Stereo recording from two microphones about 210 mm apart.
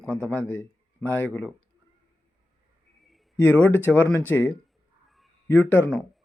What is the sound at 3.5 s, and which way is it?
Speech, 10° left (ahead or behind).